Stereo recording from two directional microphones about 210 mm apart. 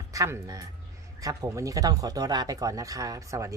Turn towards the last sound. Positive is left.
turn(degrees=-15)  # may be behind; listen again after turning